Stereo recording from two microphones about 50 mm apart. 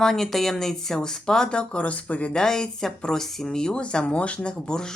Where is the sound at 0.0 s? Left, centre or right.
Centre; by 2.3 s left.